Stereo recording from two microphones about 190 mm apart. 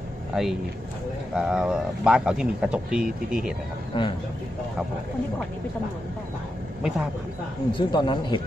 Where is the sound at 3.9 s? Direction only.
25° left (ahead or behind).